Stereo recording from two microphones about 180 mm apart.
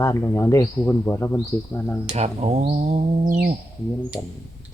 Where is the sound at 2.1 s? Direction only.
35° right (ahead or behind).